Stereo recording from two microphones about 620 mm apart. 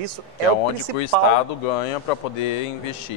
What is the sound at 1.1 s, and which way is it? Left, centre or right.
Speech, right.